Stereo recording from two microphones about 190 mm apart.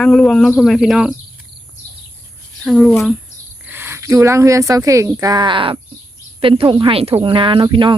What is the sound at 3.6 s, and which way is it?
Speech, 10° right (ahead or behind).